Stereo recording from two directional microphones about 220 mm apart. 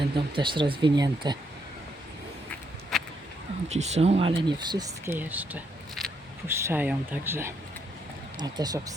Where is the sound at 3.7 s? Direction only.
30° right (ahead or behind).